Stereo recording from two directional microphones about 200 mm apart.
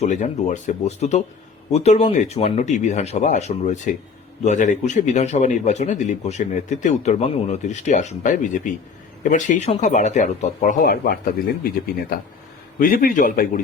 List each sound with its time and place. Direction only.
0.0 s a man's voice: 35° left (ahead or behind)
12.8 s a man's voice: 45° left (ahead or behind)